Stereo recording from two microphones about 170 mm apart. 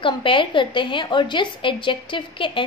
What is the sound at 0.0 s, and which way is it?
A woman's voice, 30° left (ahead or behind).